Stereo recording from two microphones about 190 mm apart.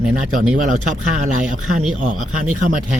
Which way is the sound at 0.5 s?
40° right (ahead or behind).